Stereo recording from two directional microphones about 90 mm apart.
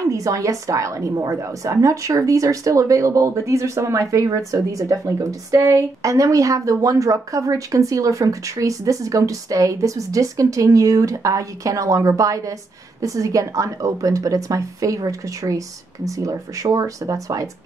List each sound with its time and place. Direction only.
0.1 s a woman's voice: 35° right (ahead or behind)